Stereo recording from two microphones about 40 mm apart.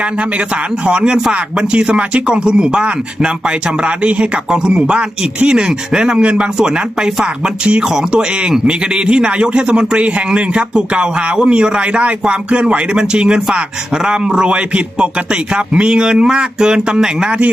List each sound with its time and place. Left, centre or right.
0.0 s a man's voice: right